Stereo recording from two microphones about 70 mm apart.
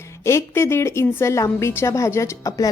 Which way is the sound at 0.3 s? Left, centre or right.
Left.